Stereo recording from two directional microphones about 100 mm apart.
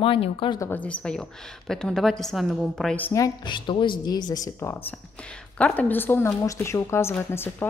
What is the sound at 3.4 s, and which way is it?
Speech, 50° left (ahead or behind).